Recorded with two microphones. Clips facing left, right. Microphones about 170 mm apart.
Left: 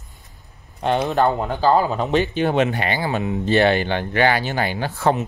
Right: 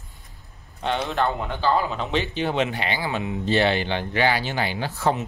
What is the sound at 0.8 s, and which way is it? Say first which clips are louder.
Speech: left 6 dB; 45° left (ahead or behind).